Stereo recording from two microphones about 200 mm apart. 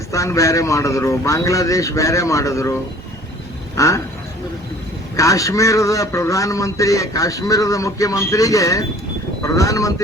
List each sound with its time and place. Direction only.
0.1 s a man's voice: 15° left (ahead or behind)
3.8 s a man's voice: 15° left (ahead or behind)
5.1 s a man's voice: 15° left (ahead or behind)